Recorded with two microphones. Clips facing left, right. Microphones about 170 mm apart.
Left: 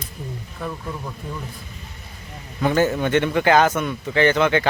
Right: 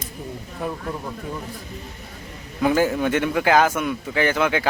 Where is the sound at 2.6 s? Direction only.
5° right (ahead or behind).